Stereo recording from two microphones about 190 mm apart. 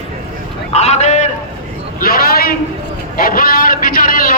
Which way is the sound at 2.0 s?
50° left (ahead or behind).